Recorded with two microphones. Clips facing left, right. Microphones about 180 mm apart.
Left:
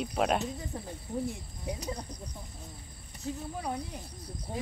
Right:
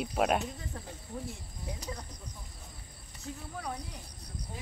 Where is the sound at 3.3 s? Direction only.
25° left (ahead or behind).